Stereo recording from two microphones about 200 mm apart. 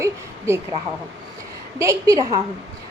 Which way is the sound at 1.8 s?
15° right (ahead or behind).